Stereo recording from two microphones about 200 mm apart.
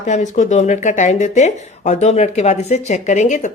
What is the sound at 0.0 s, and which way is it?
Speech, 35° left (ahead or behind).